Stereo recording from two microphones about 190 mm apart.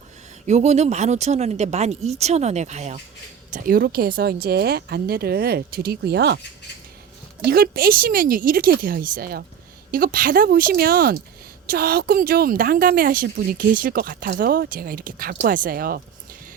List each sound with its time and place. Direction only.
0.4 s speech: 35° right (ahead or behind)
3.5 s speech: 50° right (ahead or behind)
7.4 s speech: 50° right (ahead or behind)